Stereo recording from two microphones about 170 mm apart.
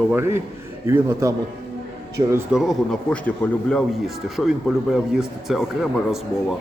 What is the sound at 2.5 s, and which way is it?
A man's voice, centre (ahead or behind).